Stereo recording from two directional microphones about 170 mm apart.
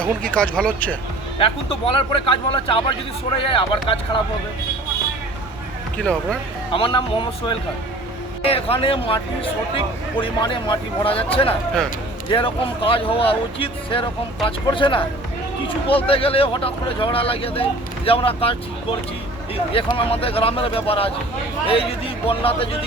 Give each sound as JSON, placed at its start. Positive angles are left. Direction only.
{"t": 0.0, "sound": "speech", "side_deg": 5}
{"t": 1.4, "sound": "speech", "side_deg": 30}
{"t": 6.0, "sound": "speech", "side_deg": 5}
{"t": 6.7, "sound": "speech", "side_deg": 30}